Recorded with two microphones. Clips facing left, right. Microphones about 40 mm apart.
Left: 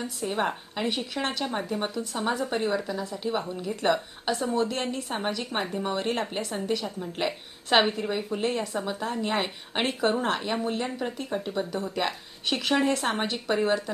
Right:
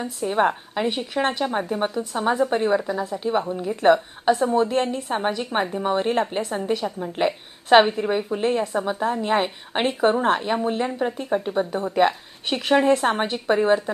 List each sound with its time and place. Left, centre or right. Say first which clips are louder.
0.0 s a woman's voice: right 7 dB; centre
3.0 s speech: right 6 dB; right
3.3 s a woman's voice: right 6 dB; right
11.5 s a woman's voice: right 7 dB; right